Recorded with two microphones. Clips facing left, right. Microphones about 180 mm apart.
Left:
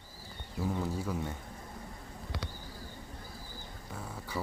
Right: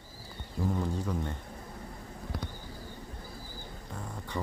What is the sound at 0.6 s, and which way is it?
Speech, 5° left (ahead or behind).